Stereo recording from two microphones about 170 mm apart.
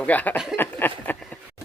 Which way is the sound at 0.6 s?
10° left (ahead or behind).